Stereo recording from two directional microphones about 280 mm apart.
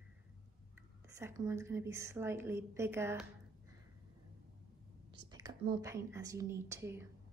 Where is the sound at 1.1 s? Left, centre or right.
Centre.